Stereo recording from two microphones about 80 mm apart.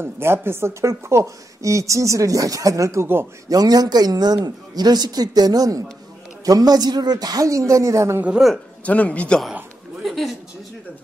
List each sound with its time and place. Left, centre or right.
0.0 s a woman's voice: right
3.4 s a man's voice: right
8.4 s a man's voice: centre
8.8 s speech: centre
10.0 s a sound: centre